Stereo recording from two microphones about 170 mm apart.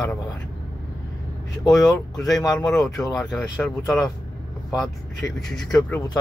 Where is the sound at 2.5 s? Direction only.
5° left (ahead or behind).